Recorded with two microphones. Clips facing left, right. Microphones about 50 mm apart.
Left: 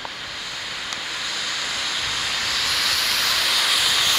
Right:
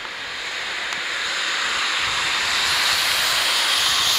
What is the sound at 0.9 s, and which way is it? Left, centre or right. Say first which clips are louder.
Vehicle: right 3 dB; right.